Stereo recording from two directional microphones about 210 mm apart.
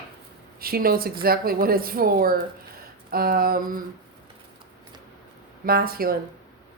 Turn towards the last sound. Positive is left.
turn(degrees=-45)  # may be behind; listen again after turning